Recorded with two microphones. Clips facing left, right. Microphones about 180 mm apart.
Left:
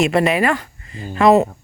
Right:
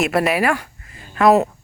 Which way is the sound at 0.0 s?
5° right (ahead or behind).